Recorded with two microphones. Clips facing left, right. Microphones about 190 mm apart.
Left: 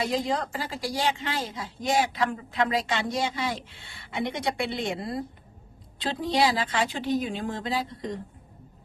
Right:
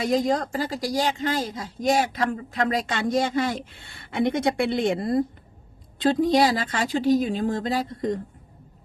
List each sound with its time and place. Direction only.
0.0 s speech: 45° right (ahead or behind)